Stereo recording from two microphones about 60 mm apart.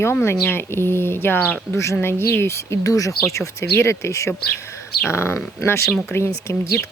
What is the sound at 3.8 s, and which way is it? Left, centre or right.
Speech, left.